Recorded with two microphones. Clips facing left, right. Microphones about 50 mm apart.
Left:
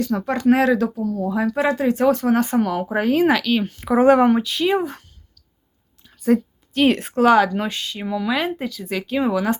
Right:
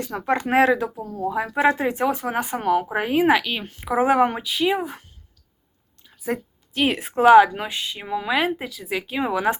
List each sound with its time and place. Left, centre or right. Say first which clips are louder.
0.0 s speech: left 4 dB; right; by 5.0 s centre
6.0 s a sound: left 9 dB; centre
7.1 s speech: right 6 dB; centre
8.4 s speech: even; centre
9.3 s speech: right 3 dB; right